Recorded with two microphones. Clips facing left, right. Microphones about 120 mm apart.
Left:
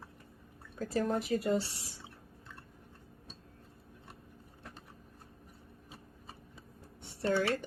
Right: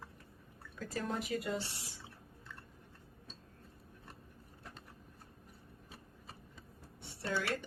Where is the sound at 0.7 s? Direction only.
45° left (ahead or behind).